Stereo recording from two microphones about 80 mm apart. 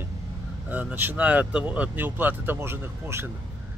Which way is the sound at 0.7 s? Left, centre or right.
Right.